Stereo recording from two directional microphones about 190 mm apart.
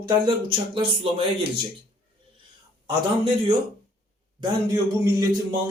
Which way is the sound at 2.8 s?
30° right (ahead or behind).